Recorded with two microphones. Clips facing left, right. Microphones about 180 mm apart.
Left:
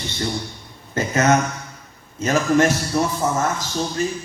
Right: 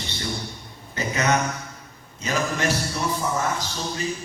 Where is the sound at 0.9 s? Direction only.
45° left (ahead or behind).